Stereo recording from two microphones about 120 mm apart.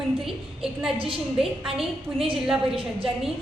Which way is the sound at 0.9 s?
45° right (ahead or behind).